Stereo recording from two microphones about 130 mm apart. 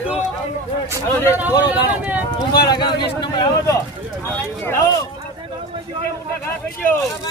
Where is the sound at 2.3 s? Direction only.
30° left (ahead or behind).